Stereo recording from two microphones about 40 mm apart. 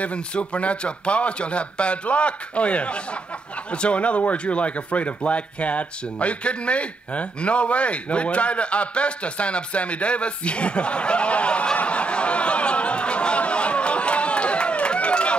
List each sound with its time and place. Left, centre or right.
0.0 s a man's voice: left